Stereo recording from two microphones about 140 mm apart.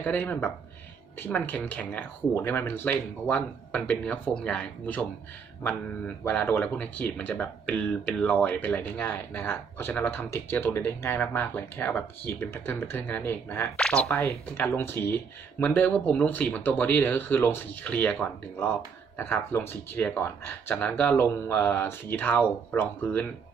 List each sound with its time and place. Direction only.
0.0 s speech: 10° left (ahead or behind)
6.2 s speech: 15° left (ahead or behind)